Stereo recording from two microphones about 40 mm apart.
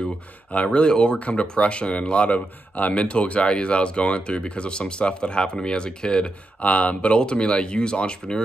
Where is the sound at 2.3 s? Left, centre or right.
Left.